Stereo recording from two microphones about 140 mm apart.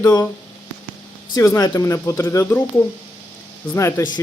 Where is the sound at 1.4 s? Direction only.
25° left (ahead or behind).